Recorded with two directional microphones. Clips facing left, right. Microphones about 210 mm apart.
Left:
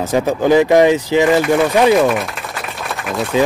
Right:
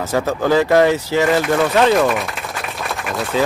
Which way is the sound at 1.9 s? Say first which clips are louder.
Left 2 dB; centre (ahead or behind).